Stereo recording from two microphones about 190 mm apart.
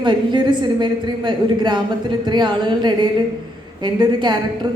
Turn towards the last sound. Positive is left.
turn(degrees=-25)  # may be behind; listen again after turning